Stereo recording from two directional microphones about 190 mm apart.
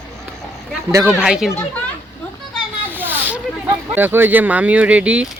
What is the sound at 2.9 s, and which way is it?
Snake, 10° right (ahead or behind).